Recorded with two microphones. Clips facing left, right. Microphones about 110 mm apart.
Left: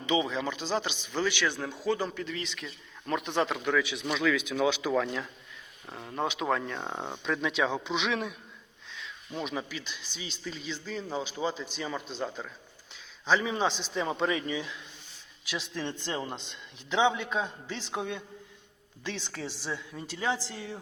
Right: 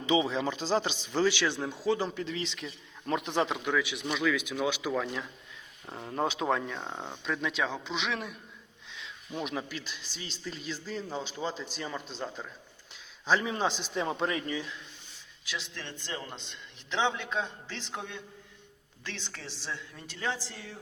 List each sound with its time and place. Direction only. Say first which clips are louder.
0.0 s speech: right 1 dB; 25° right (ahead or behind)
3.6 s speech: left 2 dB; 10° right (ahead or behind)
6.1 s speech: right 1 dB; 30° right (ahead or behind)
6.6 s speech: left 2 dB; 5° right (ahead or behind)
15.4 s speech: left 5 dB; 15° left (ahead or behind)